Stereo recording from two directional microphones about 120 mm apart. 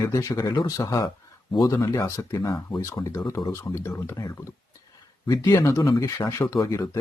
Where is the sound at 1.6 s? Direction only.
25° left (ahead or behind).